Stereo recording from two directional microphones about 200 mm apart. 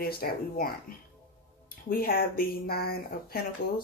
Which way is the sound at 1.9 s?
45° left (ahead or behind).